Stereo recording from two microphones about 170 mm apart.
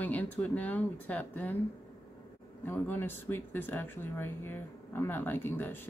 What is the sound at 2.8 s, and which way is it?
Speech, 10° left (ahead or behind).